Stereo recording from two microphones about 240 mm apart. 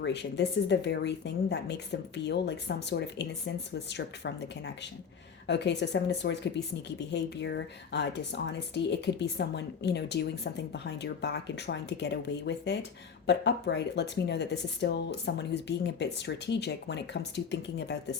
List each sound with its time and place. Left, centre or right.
0.0 s a woman's voice: left